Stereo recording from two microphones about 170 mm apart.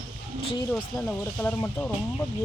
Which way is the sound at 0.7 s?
5° left (ahead or behind).